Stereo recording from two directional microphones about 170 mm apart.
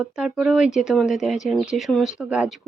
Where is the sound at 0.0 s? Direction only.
5° right (ahead or behind).